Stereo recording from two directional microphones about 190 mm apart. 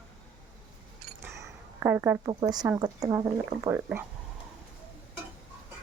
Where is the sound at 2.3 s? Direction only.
20° right (ahead or behind).